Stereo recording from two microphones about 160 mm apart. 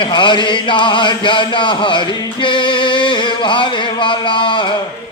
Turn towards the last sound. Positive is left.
turn(degrees=30)  # may be behind; listen again after turning